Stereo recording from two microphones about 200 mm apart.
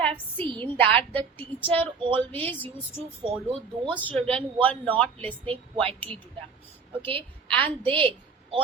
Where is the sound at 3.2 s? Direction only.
25° right (ahead or behind).